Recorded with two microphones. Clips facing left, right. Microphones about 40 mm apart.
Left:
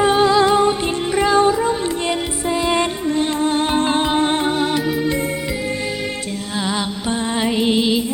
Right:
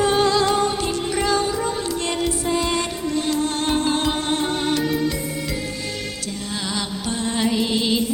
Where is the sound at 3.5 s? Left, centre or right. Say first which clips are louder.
Left 4 dB; centre.